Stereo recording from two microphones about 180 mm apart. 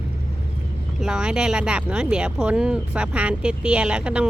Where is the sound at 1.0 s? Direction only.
5° right (ahead or behind).